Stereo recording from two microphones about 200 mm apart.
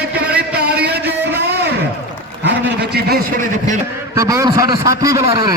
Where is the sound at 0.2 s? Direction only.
55° right (ahead or behind).